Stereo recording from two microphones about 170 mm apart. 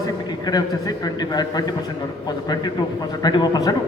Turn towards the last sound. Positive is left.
turn(degrees=25)  # may be behind; listen again after turning